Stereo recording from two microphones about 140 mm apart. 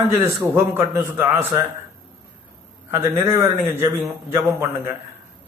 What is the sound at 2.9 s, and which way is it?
A man's voice, 20° right (ahead or behind).